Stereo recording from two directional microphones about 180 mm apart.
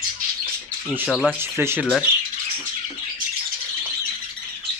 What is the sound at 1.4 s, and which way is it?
Speech, 10° right (ahead or behind).